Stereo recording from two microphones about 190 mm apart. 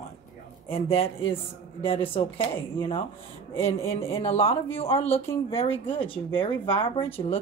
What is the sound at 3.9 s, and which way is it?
Speech, 30° left (ahead or behind).